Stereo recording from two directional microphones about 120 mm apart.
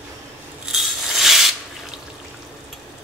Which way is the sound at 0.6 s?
Centre (ahead or behind).